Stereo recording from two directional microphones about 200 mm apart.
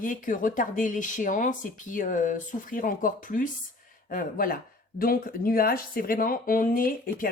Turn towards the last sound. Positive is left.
turn(degrees=45)  # may be behind; listen again after turning